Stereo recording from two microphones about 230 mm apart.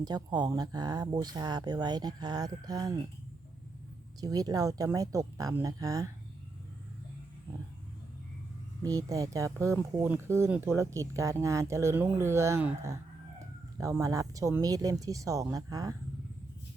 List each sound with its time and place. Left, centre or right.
0.0 s speech: centre
4.2 s speech: centre
8.8 s speech: centre